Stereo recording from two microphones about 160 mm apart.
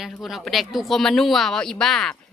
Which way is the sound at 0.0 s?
Centre (ahead or behind).